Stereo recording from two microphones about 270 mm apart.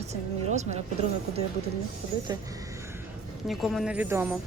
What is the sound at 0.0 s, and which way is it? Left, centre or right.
Speech, right.